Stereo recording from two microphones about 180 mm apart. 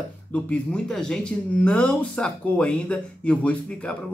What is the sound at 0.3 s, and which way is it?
Speech, 5° left (ahead or behind).